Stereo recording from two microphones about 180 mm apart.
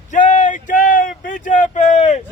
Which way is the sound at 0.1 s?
45° left (ahead or behind).